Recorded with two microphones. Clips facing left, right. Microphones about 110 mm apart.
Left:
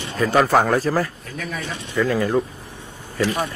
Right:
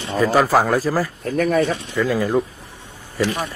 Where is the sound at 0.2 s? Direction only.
5° right (ahead or behind).